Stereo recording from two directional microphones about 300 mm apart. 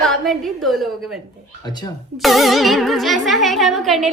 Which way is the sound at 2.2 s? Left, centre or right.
Centre.